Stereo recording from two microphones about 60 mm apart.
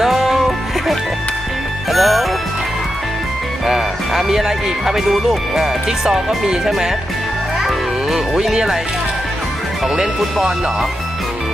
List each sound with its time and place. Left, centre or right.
0.0 s music: centre
3.7 s speech: centre
8.1 s speech: centre
9.8 s speech: centre